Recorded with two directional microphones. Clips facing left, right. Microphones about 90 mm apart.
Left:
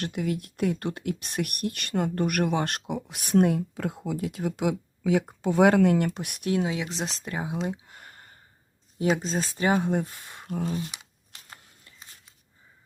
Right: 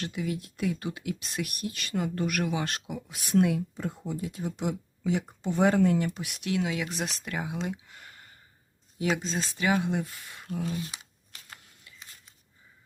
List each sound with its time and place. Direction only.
0.0 s speech: 55° left (ahead or behind)
3.8 s speech: 85° left; by 6.1 s 70° left (ahead or behind)
6.1 s speech: 45° left (ahead or behind)
6.7 s speech: 25° left (ahead or behind)
7.3 s a sound: 30° left (ahead or behind)
9.0 s speech: 40° left (ahead or behind)
11.9 s a sound: 35° left (ahead or behind)